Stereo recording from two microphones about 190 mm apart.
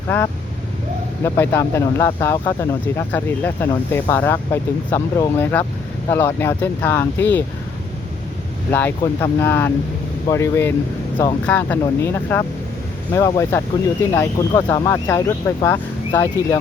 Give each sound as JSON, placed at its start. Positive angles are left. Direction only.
{"t": 1.2, "sound": "speech", "side_deg": 15}
{"t": 8.7, "sound": "speech", "side_deg": 10}